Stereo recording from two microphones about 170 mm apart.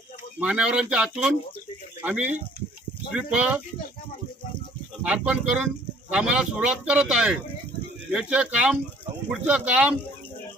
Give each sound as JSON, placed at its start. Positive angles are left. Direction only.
{"t": 0.3, "sound": "a man's voice", "side_deg": -5}
{"t": 5.0, "sound": "a man's voice", "side_deg": -5}